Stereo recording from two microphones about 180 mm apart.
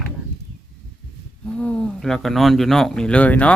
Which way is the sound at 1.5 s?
5° left (ahead or behind).